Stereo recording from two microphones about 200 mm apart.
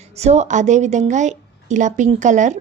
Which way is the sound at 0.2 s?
35° right (ahead or behind).